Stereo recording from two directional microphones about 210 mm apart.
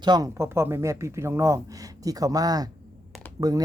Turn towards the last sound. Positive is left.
turn(degrees=-20)  # may be behind; listen again after turning